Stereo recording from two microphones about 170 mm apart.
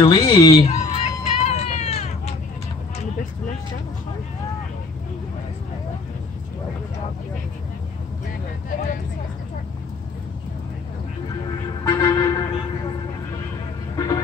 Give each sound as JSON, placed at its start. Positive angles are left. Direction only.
{"t": 0.0, "sound": "speech", "side_deg": 30}
{"t": 0.7, "sound": "a sound", "side_deg": 40}
{"t": 11.8, "sound": "vehicle", "side_deg": 25}
{"t": 13.9, "sound": "vehicle", "side_deg": 20}